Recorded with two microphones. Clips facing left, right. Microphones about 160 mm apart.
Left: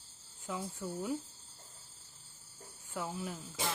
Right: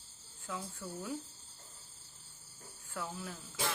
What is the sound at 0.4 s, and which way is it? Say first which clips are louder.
Speech: left 3 dB; 20° left (ahead or behind).